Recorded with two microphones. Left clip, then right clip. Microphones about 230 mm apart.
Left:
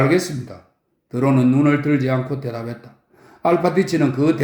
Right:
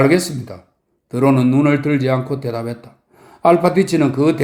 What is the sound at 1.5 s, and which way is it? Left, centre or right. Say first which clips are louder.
A man's voice: right 2 dB; right.